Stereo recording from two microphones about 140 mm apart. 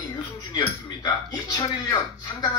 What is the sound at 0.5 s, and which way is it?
Speech, 30° left (ahead or behind).